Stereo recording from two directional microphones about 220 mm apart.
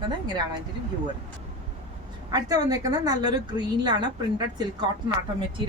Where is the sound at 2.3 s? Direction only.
15° right (ahead or behind).